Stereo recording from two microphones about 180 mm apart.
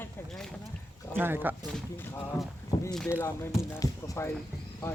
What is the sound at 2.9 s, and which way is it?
Speech, 5° left (ahead or behind).